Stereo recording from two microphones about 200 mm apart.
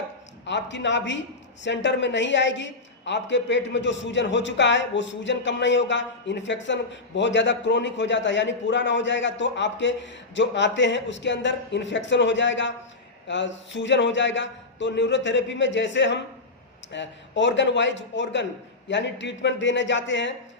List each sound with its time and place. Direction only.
0.4 s a man's voice: 65° left (ahead or behind)